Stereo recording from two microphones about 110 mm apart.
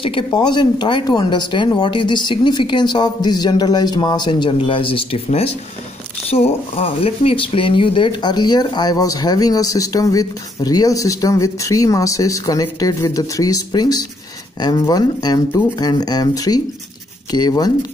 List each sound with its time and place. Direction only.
0.0 s a woman's voice: 45° left (ahead or behind)